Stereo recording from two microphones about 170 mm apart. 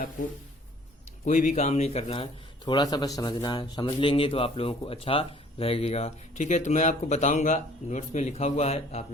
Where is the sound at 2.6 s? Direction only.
25° left (ahead or behind).